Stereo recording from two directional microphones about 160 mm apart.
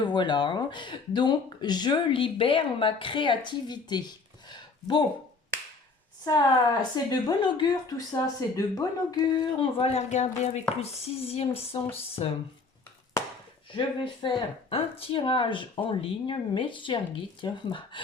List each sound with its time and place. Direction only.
0.0 s speech: 30° left (ahead or behind)
6.9 s speech: 25° left (ahead or behind)
13.7 s speech: 30° left (ahead or behind)